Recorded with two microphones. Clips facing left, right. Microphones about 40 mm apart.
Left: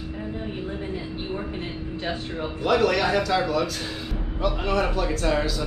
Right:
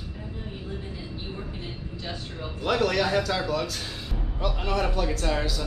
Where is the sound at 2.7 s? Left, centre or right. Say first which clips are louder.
Left 3 dB; centre.